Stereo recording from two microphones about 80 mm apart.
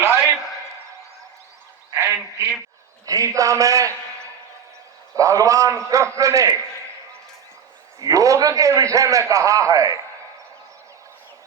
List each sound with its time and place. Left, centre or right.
0.0 s a sound: right
3.1 s a man's voice: right
8.0 s a man's voice: right